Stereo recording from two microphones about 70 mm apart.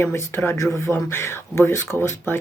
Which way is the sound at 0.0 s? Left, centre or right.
Left.